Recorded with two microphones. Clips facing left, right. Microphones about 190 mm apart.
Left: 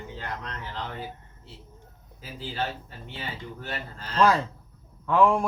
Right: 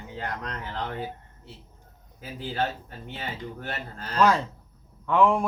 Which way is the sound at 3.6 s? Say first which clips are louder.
Right 1 dB; 55° right (ahead or behind).